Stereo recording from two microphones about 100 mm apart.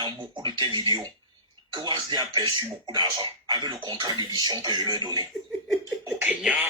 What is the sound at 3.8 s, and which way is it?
Speech, 45° right (ahead or behind).